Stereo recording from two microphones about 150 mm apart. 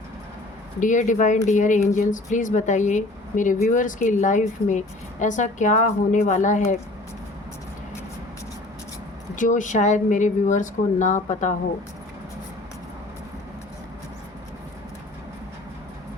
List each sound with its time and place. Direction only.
0.8 s a woman's voice: 55° left (ahead or behind)
9.3 s a woman's voice: 55° left (ahead or behind)